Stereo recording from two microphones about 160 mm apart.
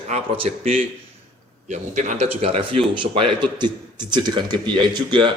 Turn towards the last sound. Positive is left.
turn(degrees=-30)  # may be behind; listen again after turning